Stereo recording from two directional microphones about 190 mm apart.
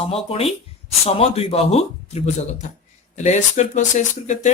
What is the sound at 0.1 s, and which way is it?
Speech, 30° left (ahead or behind).